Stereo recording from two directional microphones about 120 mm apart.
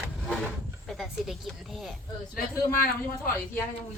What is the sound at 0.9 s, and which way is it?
Speech, centre (ahead or behind).